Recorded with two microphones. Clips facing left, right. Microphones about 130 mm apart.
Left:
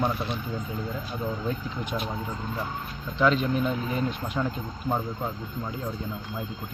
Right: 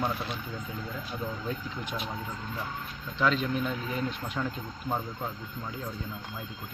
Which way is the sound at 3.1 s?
20° left (ahead or behind).